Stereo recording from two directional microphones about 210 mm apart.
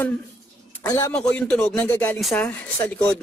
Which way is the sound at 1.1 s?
5° left (ahead or behind).